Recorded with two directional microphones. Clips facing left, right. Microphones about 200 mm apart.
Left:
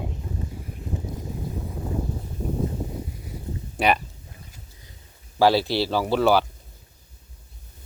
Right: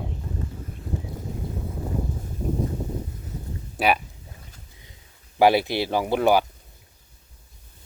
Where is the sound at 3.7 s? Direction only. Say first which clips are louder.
Even; 5° right (ahead or behind).